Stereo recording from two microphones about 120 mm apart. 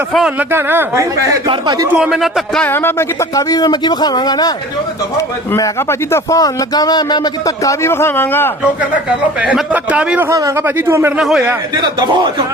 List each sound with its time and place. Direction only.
0.3 s a man's voice: 15° right (ahead or behind)
2.0 s speech: centre (ahead or behind)
2.6 s a man's voice: 20° left (ahead or behind); by 4.5 s 35° left (ahead or behind)
5.5 s speech: 25° left (ahead or behind)
9.4 s a man's voice: 10° right (ahead or behind)
10.2 s speech: 25° right (ahead or behind)
11.2 s speech: centre (ahead or behind)
11.8 s a man's voice: 40° right (ahead or behind)